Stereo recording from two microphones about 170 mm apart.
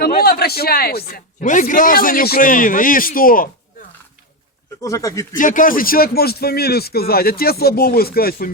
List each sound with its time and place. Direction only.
0.0 s a sound: 65° left (ahead or behind)
1.1 s a man's voice: 50° left (ahead or behind)
4.8 s speech: 20° left (ahead or behind)
5.3 s a man's voice: 50° left (ahead or behind)